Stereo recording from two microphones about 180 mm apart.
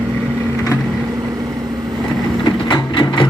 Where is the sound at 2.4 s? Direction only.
25° left (ahead or behind).